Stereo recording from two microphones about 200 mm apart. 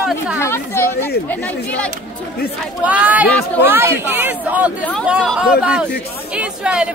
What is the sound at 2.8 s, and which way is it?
Speech, 5° right (ahead or behind).